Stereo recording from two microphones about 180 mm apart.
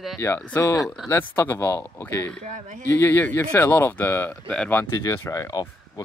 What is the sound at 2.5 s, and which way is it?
Speech, 45° right (ahead or behind).